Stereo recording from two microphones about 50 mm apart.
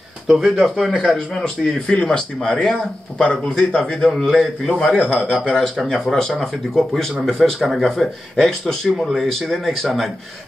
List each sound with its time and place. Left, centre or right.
0.3 s speech: centre
1.1 s speech: centre
4.7 s a man's voice: left
5.6 s speech: centre